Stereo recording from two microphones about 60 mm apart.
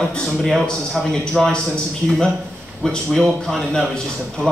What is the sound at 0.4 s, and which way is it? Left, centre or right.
A man's voice, centre.